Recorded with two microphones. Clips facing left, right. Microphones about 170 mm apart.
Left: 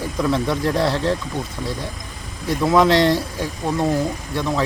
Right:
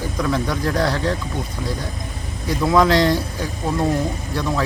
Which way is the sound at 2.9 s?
25° left (ahead or behind).